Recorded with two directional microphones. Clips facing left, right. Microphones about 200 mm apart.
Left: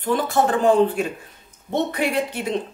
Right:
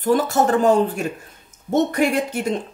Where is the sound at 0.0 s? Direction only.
40° right (ahead or behind).